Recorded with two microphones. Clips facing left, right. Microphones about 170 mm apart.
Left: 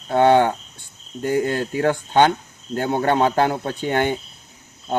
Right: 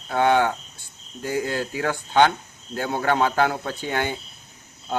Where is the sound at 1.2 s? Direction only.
55° left (ahead or behind).